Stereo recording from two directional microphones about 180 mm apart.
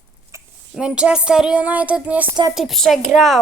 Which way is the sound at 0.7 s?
5° right (ahead or behind).